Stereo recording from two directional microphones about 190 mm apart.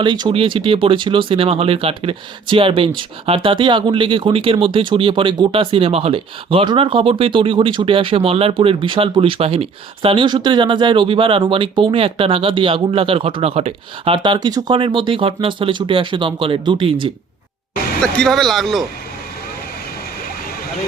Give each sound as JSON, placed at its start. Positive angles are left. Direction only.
{"t": 0.0, "sound": "speech", "side_deg": -25}
{"t": 18.0, "sound": "speech", "side_deg": 5}